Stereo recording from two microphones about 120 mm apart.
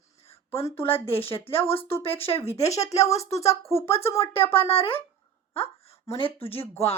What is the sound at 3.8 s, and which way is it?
A woman's voice, 55° left (ahead or behind).